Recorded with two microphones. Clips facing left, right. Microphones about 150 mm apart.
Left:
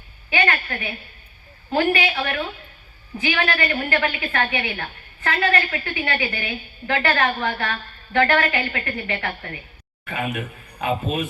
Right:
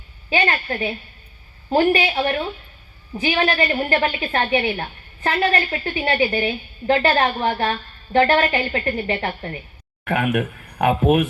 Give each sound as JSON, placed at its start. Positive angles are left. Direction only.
{"t": 0.3, "sound": "a woman's voice", "side_deg": -30}
{"t": 10.0, "sound": "speech", "side_deg": -65}